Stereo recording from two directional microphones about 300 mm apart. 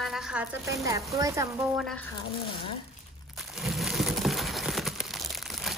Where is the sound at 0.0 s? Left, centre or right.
Centre.